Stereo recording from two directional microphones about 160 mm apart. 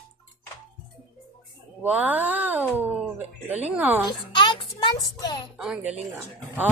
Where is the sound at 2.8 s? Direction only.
10° right (ahead or behind).